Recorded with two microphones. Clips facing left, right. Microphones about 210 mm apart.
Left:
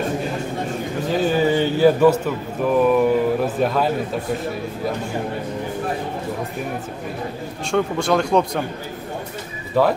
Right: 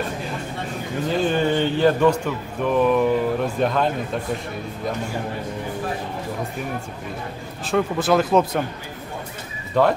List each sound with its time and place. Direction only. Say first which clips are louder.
1.0 s a man's voice: left 2 dB; 5° left (ahead or behind)
7.7 s speech: even; 5° right (ahead or behind)
9.8 s speech: left 1 dB; 5° left (ahead or behind)